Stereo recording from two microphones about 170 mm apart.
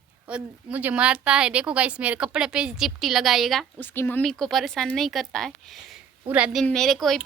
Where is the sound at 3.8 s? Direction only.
10° left (ahead or behind).